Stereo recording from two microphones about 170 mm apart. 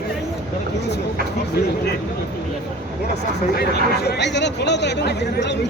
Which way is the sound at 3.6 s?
70° left (ahead or behind).